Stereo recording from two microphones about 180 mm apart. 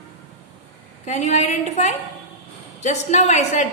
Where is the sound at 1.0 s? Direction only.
40° left (ahead or behind).